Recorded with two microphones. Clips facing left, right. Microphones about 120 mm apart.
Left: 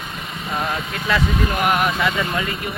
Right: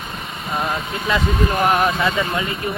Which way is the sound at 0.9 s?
20° right (ahead or behind).